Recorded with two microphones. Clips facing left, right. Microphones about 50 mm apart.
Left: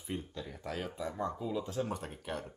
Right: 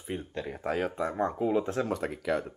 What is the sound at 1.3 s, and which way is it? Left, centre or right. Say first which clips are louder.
Speech: right 9 dB; right.